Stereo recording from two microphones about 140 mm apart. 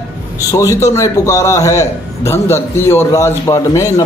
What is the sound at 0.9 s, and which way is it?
A man's voice, 20° left (ahead or behind).